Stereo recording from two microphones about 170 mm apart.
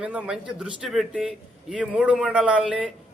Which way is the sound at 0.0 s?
5° right (ahead or behind).